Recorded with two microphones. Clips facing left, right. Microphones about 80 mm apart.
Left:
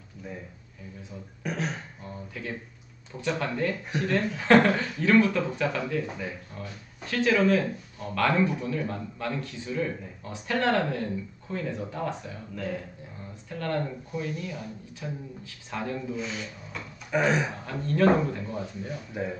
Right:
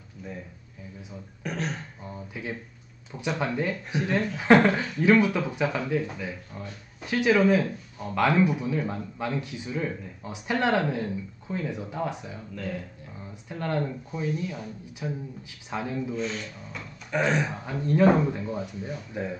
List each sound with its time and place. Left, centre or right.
1.4 s speech: centre
2.3 s speech: centre
7.1 s speech: centre
12.5 s speech: centre
13.5 s speech: centre
16.1 s speech: centre
17.6 s speech: centre
19.1 s speech: centre